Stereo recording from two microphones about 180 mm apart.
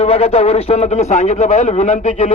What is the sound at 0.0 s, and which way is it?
Speech, 35° left (ahead or behind).